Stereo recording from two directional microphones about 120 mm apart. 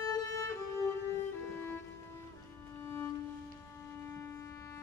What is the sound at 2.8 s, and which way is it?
Music, 20° left (ahead or behind).